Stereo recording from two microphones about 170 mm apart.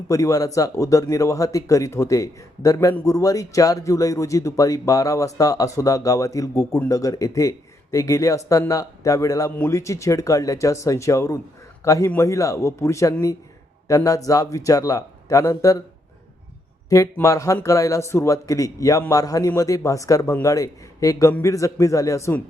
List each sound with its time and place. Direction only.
0.1 s speech: 20° left (ahead or behind)
16.9 s speech: 20° left (ahead or behind)